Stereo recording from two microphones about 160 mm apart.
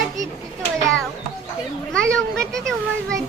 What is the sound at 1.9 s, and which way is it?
Children playing, 5° left (ahead or behind).